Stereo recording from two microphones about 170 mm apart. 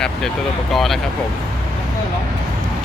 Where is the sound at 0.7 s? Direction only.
Centre (ahead or behind).